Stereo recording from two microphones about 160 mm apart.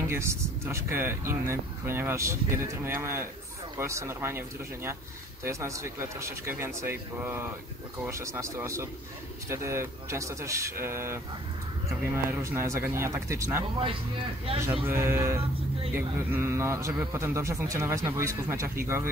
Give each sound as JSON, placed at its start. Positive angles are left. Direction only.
{"t": 0.0, "sound": "speech", "side_deg": -15}
{"t": 14.4, "sound": "speech", "side_deg": -35}
{"t": 14.9, "sound": "speech", "side_deg": -15}